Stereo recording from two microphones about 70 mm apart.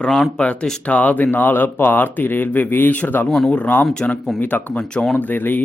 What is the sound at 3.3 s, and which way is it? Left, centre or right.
Speech, centre.